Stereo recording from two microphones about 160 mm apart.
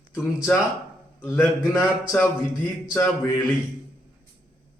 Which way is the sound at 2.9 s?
15° left (ahead or behind).